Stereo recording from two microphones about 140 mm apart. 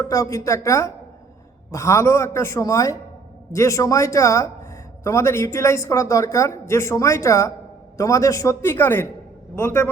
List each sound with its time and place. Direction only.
0.0 s a man's voice: 25° left (ahead or behind)